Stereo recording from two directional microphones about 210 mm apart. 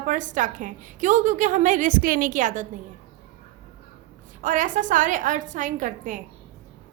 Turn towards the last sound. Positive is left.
turn(degrees=-40)  # may be behind; listen again after turning